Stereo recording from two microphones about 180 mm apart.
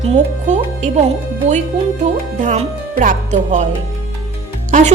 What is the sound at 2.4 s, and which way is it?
A woman's voice, 45° right (ahead or behind).